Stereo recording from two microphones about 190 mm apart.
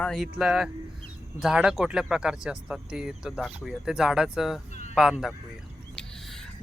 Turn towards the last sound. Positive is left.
turn(degrees=0)  # may be behind; listen again after turning